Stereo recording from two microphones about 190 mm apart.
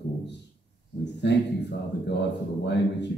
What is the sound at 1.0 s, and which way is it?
A man's voice, 65° left (ahead or behind).